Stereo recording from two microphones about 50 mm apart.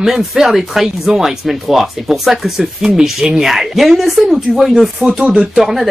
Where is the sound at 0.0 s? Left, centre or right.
Centre.